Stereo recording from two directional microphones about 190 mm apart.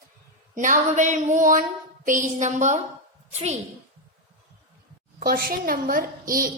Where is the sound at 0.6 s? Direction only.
40° right (ahead or behind).